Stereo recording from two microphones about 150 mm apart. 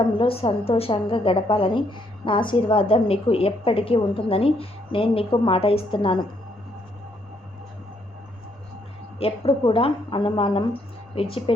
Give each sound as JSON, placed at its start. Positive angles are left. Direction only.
{"t": 0.0, "sound": "a woman's voice", "side_deg": 35}
{"t": 9.1, "sound": "a woman's voice", "side_deg": 40}